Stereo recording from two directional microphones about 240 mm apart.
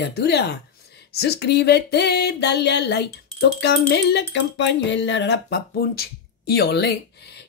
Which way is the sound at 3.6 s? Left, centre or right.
Left.